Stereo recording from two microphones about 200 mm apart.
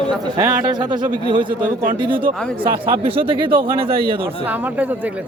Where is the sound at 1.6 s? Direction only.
45° right (ahead or behind).